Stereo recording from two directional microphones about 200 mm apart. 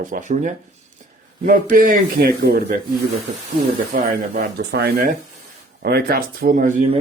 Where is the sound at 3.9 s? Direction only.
45° right (ahead or behind).